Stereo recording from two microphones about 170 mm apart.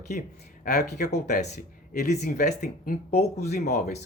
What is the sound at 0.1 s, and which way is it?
Speech, 50° left (ahead or behind).